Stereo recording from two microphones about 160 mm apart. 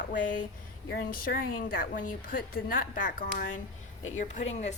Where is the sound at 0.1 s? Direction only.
55° left (ahead or behind).